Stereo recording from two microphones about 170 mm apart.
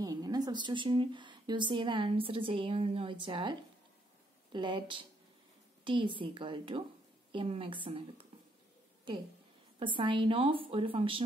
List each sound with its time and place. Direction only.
0.0 s a woman's voice: 20° right (ahead or behind)
9.8 s a woman's voice: 30° right (ahead or behind)